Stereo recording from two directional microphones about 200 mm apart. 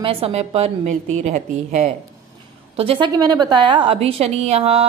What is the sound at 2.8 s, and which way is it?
A woman's voice, 25° right (ahead or behind).